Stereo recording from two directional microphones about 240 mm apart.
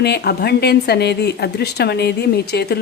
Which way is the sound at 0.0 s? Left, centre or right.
Left.